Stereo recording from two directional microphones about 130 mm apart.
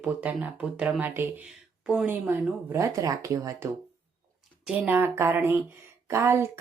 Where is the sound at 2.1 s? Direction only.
15° right (ahead or behind).